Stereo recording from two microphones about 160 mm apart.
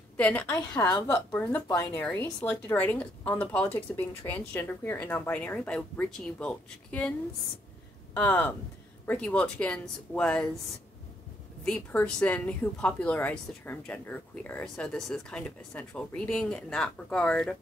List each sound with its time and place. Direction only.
0.2 s a woman's voice: 10° left (ahead or behind)
0.7 s a woman's voice: 20° left (ahead or behind)
11.6 s a woman's voice: 10° left (ahead or behind)